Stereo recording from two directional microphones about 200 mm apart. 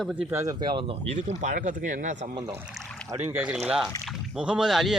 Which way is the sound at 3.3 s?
5° right (ahead or behind).